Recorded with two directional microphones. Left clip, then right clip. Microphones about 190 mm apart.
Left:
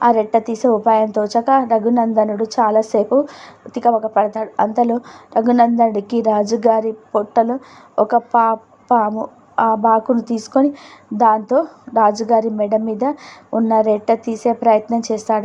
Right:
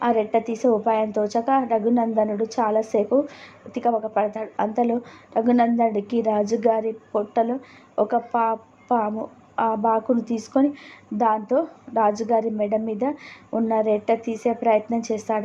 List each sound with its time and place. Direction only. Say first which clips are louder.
0.0 s a woman's voice: left 7 dB; 25° left (ahead or behind)